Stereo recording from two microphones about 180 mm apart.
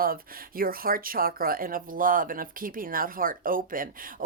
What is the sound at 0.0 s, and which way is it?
Speech, 55° right (ahead or behind).